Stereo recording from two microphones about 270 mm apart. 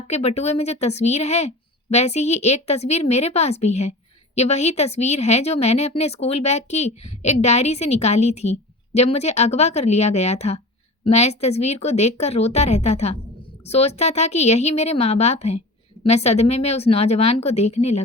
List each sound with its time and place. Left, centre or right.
0.1 s a woman's voice: left